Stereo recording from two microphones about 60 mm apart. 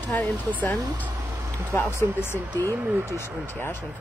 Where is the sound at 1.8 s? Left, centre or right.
Left.